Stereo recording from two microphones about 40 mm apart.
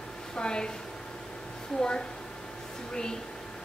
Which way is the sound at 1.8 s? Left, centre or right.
Left.